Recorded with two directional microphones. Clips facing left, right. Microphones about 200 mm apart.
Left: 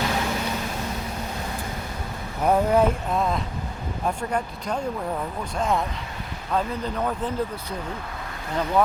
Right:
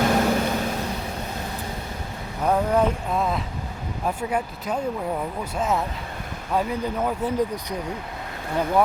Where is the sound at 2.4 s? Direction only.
10° left (ahead or behind).